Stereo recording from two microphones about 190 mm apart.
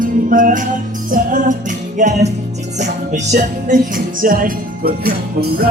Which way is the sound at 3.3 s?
45° right (ahead or behind).